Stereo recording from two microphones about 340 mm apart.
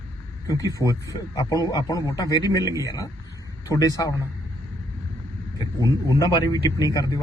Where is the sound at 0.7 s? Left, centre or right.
Centre.